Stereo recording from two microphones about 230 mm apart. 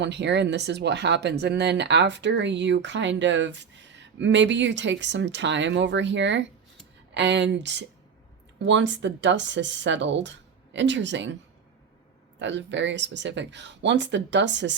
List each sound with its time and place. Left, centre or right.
0.0 s speech: right
12.4 s speech: right